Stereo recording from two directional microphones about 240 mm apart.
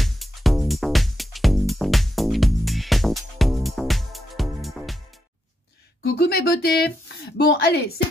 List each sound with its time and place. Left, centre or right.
0.0 s music: centre
6.1 s a sound: left
7.3 s speech: left